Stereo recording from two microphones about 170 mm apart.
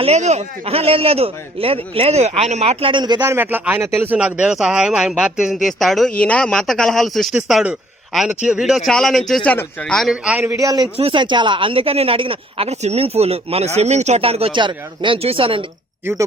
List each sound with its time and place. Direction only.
0.0 s speech: 40° right (ahead or behind); by 3.3 s 25° right (ahead or behind)
3.3 s speech: 10° right (ahead or behind)
10.9 s speech: 30° right (ahead or behind)
16.0 s speech: 15° right (ahead or behind)